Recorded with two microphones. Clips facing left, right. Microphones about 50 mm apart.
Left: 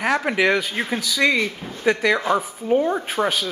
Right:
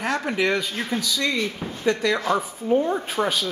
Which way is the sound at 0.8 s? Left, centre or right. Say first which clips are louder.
Left 4 dB; left.